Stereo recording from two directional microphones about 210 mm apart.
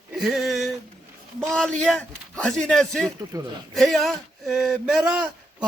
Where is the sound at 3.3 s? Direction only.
15° right (ahead or behind).